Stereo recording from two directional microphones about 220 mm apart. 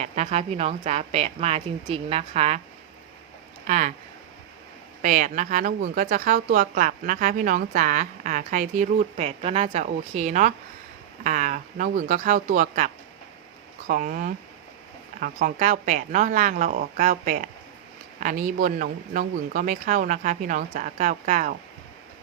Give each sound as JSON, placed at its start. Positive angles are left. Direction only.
{"t": 0.0, "sound": "a woman's voice", "side_deg": -30}
{"t": 3.7, "sound": "a woman's voice", "side_deg": -35}
{"t": 5.0, "sound": "a woman's voice", "side_deg": -35}